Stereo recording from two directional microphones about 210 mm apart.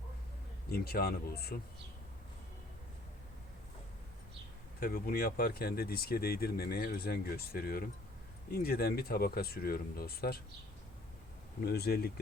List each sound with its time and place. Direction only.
0.7 s speech: 50° left (ahead or behind)
4.8 s speech: 45° left (ahead or behind)
11.6 s speech: 50° left (ahead or behind)